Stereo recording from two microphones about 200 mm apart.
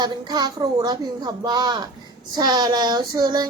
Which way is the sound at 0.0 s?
20° right (ahead or behind).